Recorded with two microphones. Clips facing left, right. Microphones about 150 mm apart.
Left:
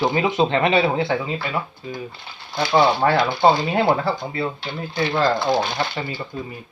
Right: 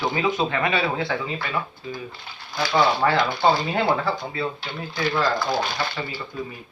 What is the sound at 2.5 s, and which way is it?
Speech, 25° left (ahead or behind).